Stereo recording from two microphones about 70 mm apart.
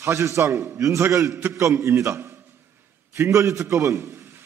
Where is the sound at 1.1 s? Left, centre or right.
Right.